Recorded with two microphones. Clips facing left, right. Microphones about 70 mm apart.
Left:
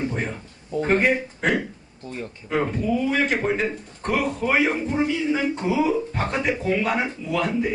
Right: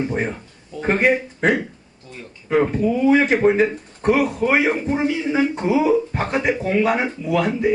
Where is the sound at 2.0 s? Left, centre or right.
Left.